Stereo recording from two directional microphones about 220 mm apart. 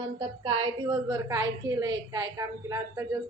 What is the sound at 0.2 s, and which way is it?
A woman's voice, 20° right (ahead or behind).